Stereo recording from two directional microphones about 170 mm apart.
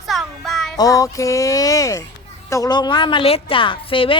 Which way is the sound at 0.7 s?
20° left (ahead or behind).